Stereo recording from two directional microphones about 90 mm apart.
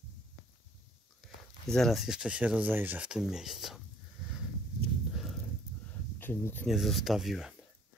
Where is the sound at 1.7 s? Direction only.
Centre (ahead or behind); by 3.1 s 20° right (ahead or behind).